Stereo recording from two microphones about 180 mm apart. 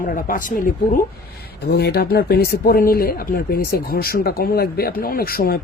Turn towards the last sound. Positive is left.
turn(degrees=55)  # may be behind; listen again after turning